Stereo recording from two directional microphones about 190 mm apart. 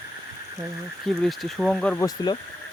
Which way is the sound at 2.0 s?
20° left (ahead or behind).